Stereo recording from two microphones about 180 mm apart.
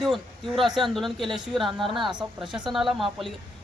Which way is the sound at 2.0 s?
25° right (ahead or behind).